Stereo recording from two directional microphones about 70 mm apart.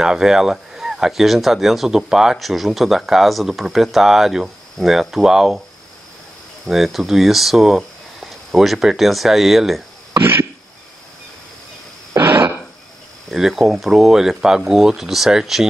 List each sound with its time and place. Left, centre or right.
0.0 s speech: centre
6.6 s speech: centre
12.2 s a sound: right
13.3 s speech: centre